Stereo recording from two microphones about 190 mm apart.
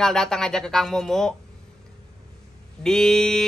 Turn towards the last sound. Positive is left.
turn(degrees=0)  # may be behind; listen again after turning